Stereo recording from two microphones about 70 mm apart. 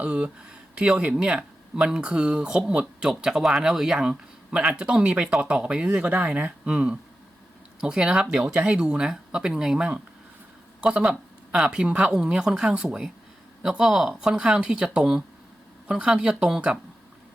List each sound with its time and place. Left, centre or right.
0.0 s speech: centre